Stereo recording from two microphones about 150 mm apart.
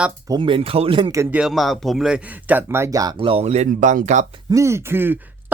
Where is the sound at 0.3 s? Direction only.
30° right (ahead or behind).